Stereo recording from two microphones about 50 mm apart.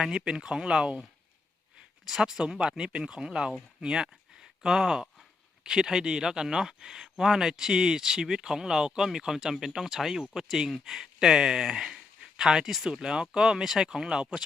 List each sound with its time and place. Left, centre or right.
0.0 s speech: centre
2.0 s speech: centre